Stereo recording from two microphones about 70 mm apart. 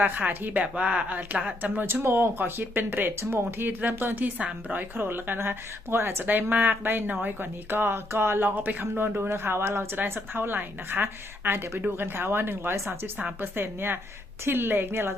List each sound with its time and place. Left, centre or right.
0.0 s speech: right
1.9 s speech: right